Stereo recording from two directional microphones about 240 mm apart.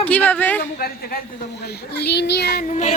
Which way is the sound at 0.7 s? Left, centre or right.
Left.